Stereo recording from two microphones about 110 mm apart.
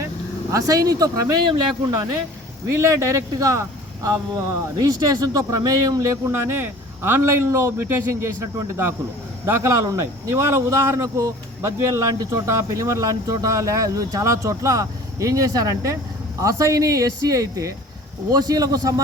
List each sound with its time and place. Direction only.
0.5 s a man's voice: 30° right (ahead or behind)
2.6 s a man's voice: 30° right (ahead or behind)